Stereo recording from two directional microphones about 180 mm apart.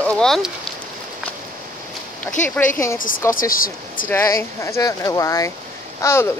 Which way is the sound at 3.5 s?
50° left (ahead or behind).